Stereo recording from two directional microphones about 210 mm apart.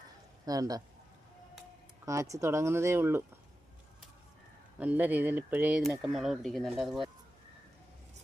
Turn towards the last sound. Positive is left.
turn(degrees=0)  # may be behind; listen again after turning